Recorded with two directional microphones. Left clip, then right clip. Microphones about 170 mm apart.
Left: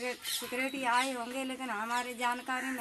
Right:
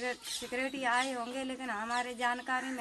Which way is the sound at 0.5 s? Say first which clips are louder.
Even; centre (ahead or behind).